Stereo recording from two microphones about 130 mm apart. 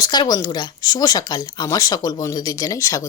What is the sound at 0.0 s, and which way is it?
Speech, 35° left (ahead or behind).